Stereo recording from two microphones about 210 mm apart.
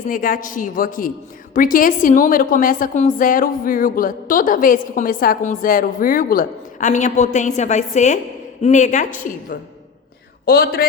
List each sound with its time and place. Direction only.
0.1 s a woman's voice: 40° left (ahead or behind)